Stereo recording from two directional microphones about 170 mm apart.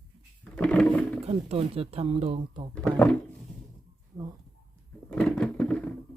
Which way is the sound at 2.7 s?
5° left (ahead or behind).